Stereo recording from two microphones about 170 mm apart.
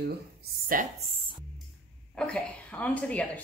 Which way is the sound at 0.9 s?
35° right (ahead or behind).